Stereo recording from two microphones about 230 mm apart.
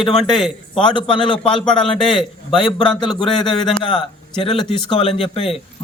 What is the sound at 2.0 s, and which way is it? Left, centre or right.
Speech, centre.